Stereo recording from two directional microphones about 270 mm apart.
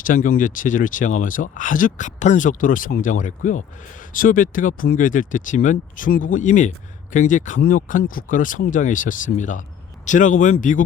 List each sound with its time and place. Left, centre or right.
0.0 s speech: left